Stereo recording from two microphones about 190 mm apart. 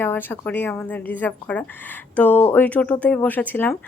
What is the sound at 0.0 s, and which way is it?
Speech, 10° left (ahead or behind).